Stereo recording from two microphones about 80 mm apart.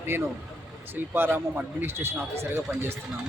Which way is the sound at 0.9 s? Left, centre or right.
Right.